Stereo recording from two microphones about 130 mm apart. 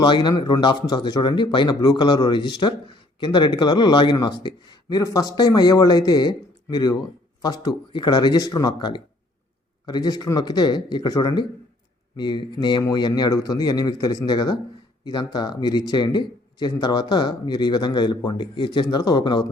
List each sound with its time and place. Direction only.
0.0 s speech: 35° left (ahead or behind)